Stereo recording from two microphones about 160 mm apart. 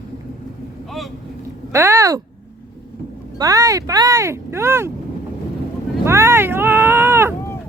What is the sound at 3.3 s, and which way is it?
Speech, 20° right (ahead or behind).